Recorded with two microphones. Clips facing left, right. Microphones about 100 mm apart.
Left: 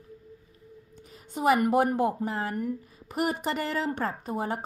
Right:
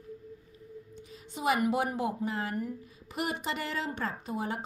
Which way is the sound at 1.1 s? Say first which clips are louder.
Left 6 dB; 45° left (ahead or behind).